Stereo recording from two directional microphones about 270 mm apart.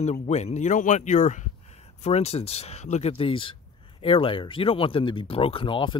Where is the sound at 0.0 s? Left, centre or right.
Left.